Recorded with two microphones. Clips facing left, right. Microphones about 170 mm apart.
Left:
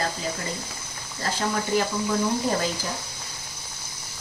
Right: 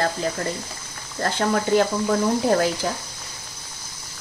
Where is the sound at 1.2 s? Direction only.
60° right (ahead or behind).